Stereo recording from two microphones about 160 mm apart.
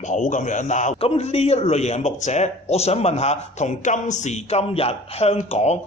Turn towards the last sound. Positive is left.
turn(degrees=45)  # may be behind; listen again after turning